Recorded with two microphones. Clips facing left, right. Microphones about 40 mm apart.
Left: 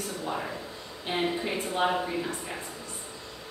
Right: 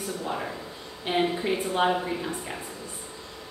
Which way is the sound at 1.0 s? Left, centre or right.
Centre.